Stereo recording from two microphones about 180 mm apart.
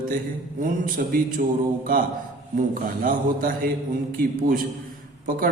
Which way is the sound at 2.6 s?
50° right (ahead or behind).